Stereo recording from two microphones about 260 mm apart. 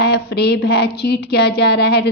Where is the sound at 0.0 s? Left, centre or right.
Left.